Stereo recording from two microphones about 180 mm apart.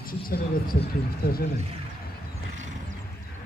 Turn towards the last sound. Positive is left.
turn(degrees=60)  # may be behind; listen again after turning